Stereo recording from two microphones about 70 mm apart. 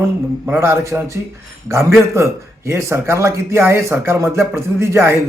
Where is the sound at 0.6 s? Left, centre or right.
Right.